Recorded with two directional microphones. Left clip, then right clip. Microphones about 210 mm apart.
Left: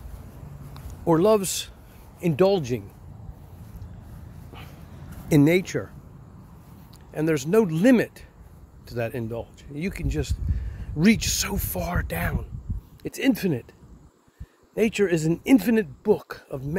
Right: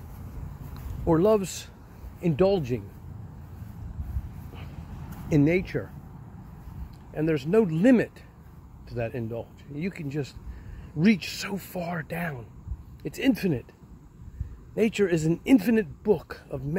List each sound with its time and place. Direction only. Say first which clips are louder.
0.7 s speech: left 3 dB; 15° left (ahead or behind)
5.3 s speech: left 4 dB; 25° left (ahead or behind)
7.2 s speech: left 2 dB; 20° left (ahead or behind)
14.8 s speech: left 2 dB; 15° left (ahead or behind)